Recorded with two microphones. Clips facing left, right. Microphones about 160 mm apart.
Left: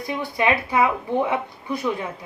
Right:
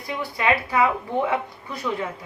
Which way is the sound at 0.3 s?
20° left (ahead or behind).